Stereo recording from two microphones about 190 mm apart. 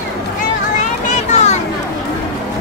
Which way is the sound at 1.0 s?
35° left (ahead or behind).